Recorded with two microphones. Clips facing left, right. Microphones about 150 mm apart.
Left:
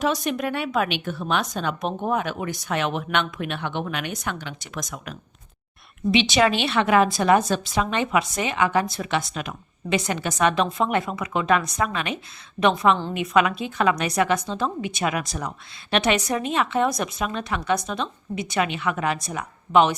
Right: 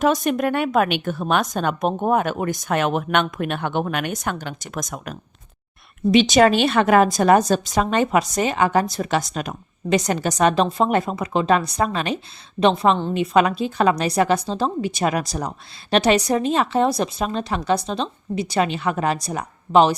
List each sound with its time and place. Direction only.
0.0 s a woman's voice: 50° right (ahead or behind)